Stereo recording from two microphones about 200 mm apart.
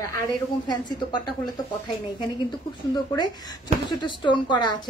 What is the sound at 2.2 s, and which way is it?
Speech, 20° left (ahead or behind).